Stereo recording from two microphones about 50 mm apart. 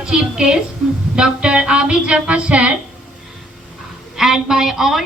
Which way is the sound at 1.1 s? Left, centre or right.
Centre.